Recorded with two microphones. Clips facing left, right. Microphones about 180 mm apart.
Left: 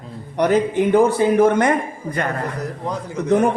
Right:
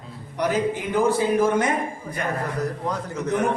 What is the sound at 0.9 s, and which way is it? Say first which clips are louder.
Speech: left 5 dB; 60° left (ahead or behind).